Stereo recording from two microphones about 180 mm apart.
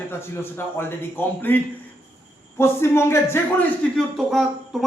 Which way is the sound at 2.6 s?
15° left (ahead or behind).